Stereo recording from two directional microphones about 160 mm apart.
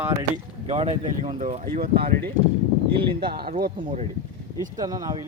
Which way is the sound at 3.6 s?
65° right (ahead or behind).